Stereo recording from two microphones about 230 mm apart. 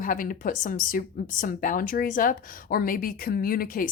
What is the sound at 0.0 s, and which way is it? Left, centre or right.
Speech, left.